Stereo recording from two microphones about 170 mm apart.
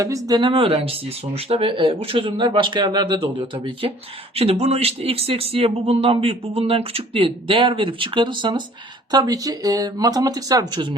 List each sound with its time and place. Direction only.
0.0 s speech: 20° right (ahead or behind)